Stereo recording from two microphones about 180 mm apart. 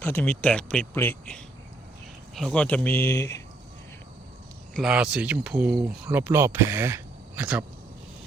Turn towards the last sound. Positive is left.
turn(degrees=-10)  # may be behind; listen again after turning